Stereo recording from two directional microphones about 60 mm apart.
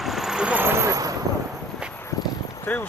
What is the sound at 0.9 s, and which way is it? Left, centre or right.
Vehicle, right.